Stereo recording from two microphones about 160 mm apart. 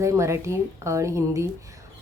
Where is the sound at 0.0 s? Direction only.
20° right (ahead or behind).